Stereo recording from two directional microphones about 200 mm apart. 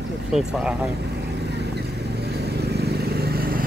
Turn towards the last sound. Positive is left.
turn(degrees=-50)  # may be behind; listen again after turning